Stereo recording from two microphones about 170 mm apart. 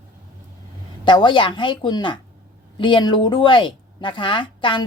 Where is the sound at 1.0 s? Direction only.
30° left (ahead or behind).